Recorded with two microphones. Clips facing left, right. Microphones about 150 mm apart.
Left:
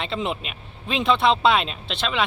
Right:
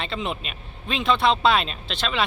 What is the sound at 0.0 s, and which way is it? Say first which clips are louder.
Speech: left 2 dB; 25° left (ahead or behind).